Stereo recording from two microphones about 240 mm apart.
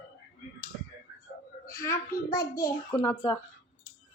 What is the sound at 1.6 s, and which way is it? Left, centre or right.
A child's voice, centre.